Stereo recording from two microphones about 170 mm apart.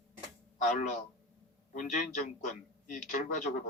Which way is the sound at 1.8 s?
45° left (ahead or behind).